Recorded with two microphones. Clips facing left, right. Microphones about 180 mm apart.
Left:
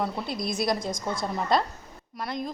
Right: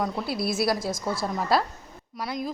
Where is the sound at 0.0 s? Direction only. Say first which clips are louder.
Right 2 dB; 5° right (ahead or behind).